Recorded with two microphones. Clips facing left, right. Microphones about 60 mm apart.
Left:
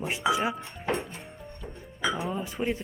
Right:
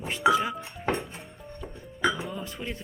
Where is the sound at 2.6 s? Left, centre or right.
Left.